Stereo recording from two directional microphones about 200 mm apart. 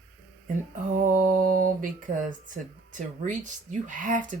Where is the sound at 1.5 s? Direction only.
40° right (ahead or behind).